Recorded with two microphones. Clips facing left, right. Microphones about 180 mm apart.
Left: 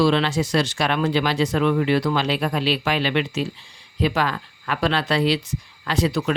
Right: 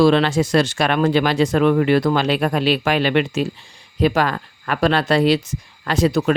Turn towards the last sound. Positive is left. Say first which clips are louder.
# right 5 dB
turn(degrees=-45)  # may be behind; listen again after turning